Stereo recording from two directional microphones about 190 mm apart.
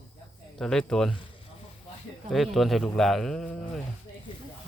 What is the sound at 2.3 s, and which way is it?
A man's voice, centre (ahead or behind).